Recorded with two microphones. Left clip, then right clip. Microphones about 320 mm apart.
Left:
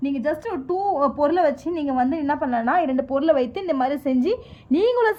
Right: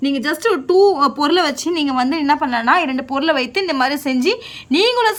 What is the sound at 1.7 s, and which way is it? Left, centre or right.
Speech, centre.